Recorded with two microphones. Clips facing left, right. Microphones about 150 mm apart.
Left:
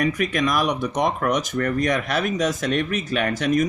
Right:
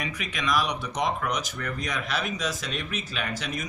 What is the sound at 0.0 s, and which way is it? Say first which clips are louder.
Speech: left 10 dB; 50° left (ahead or behind).